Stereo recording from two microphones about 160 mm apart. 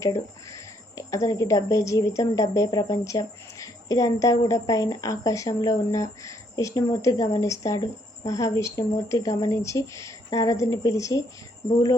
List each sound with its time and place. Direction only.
0.0 s speech: 20° left (ahead or behind)